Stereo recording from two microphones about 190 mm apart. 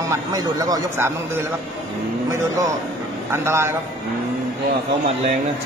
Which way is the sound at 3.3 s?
15° right (ahead or behind).